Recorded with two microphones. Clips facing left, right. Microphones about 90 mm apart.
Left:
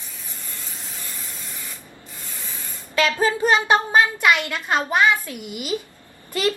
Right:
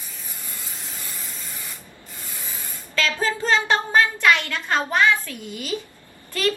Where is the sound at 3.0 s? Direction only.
20° left (ahead or behind).